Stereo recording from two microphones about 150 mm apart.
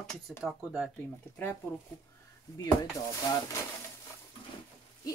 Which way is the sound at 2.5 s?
20° left (ahead or behind).